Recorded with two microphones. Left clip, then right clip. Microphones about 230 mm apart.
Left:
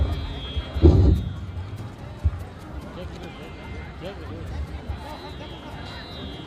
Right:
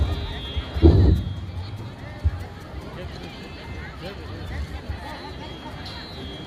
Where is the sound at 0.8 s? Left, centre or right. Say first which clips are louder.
Right 1 dB; left.